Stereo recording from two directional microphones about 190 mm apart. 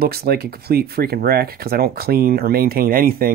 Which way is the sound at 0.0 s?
55° right (ahead or behind).